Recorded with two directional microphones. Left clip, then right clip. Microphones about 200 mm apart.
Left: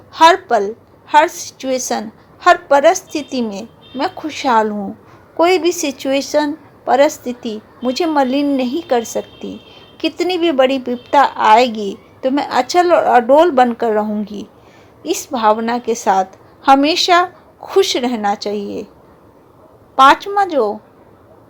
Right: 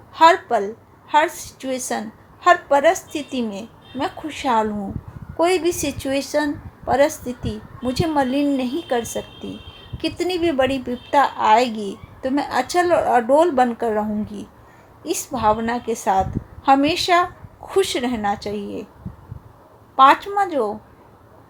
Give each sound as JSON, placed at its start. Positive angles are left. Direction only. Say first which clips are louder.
{"t": 0.1, "sound": "a woman's voice", "louder": "left 4 dB", "side_deg": 20}
{"t": 20.0, "sound": "a woman's voice", "louder": "left 4 dB", "side_deg": 20}